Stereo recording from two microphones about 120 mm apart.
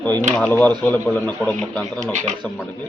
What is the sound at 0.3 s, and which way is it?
A man's voice, 10° left (ahead or behind).